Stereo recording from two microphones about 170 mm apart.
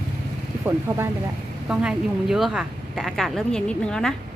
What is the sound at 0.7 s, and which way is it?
A woman's voice, 15° right (ahead or behind).